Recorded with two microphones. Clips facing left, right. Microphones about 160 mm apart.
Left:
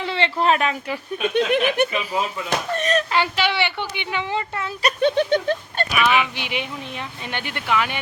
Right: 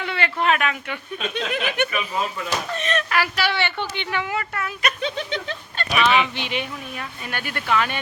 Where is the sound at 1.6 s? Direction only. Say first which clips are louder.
Left 4 dB; 40° left (ahead or behind).